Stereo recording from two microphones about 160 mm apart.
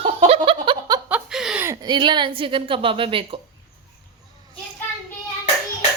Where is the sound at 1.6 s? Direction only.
20° right (ahead or behind).